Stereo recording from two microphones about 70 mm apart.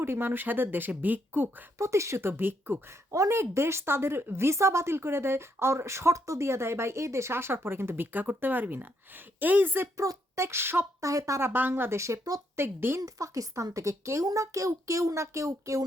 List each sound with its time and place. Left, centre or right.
0.0 s speech: right
1.8 s speech: right
3.1 s speech: right
10.0 s speech: right
11.0 s speech: right
13.0 s speech: right